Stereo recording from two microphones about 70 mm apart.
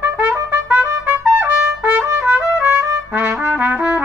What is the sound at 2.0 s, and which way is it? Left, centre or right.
Trumpet, right.